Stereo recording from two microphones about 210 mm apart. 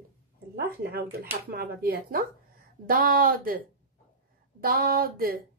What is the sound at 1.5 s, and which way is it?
Speech, 45° right (ahead or behind).